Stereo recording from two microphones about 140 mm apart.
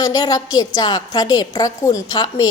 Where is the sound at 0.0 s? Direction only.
25° left (ahead or behind).